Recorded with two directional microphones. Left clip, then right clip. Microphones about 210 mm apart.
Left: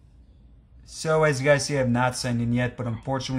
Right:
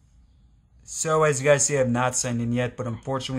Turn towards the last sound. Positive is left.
turn(degrees=-20)  # may be behind; listen again after turning